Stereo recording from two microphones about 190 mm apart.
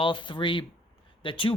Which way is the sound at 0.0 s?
25° left (ahead or behind).